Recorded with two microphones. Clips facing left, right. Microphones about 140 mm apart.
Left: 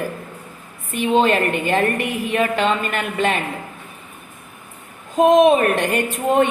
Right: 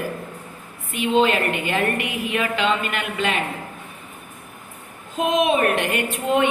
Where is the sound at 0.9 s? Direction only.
45° left (ahead or behind).